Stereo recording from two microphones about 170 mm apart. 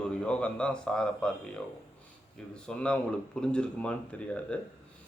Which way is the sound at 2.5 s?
5° left (ahead or behind).